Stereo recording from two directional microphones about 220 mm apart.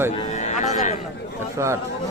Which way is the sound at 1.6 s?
10° right (ahead or behind).